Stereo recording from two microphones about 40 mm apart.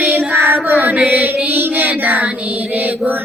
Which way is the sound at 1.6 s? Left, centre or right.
Right.